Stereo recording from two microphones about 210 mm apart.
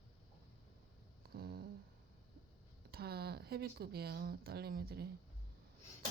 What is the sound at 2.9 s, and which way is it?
Speech, 50° right (ahead or behind).